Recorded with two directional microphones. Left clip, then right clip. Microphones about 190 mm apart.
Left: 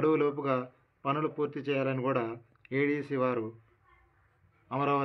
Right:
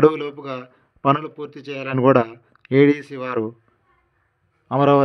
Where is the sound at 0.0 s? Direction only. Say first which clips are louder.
Right 10 dB; 65° right (ahead or behind).